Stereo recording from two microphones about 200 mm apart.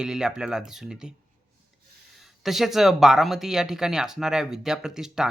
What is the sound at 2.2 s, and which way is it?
Speech, centre (ahead or behind).